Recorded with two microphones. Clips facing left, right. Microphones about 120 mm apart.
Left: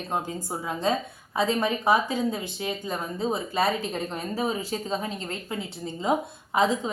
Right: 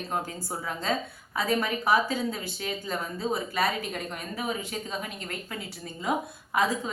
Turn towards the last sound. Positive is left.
turn(degrees=25)  # may be behind; listen again after turning